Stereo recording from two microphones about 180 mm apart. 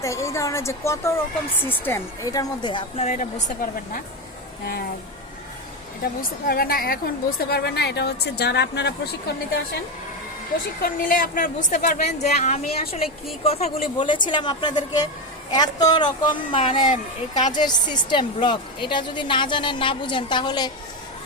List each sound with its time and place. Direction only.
0.0 s a woman's voice: 15° left (ahead or behind)
3.0 s a woman's voice: 40° left (ahead or behind)
6.4 s a woman's voice: 55° left (ahead or behind)
10.8 s a woman's voice: 50° left (ahead or behind); by 16.8 s 30° left (ahead or behind)
16.8 s a woman's voice: 45° left (ahead or behind)
17.6 s a woman's voice: 25° left (ahead or behind)